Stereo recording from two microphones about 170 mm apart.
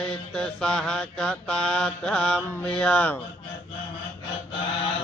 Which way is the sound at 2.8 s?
5° left (ahead or behind).